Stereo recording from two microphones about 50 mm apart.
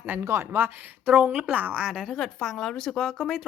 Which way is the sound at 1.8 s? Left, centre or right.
Centre.